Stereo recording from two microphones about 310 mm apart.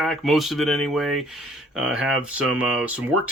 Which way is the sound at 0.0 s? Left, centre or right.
Centre.